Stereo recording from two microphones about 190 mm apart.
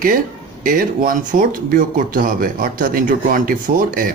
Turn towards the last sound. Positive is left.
turn(degrees=-45)  # may be behind; listen again after turning